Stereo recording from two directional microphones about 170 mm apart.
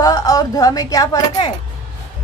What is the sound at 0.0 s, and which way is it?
A woman's voice, 20° left (ahead or behind).